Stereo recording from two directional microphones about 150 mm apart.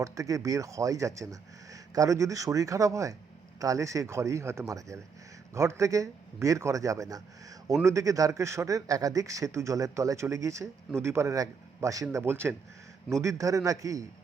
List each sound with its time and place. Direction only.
0.0 s speech: 20° right (ahead or behind)